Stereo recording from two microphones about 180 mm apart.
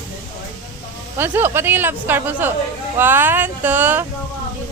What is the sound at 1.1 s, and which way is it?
A woman's voice, 10° right (ahead or behind).